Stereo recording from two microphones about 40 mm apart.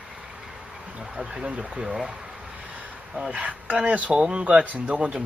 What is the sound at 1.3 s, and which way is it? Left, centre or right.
Speech, right.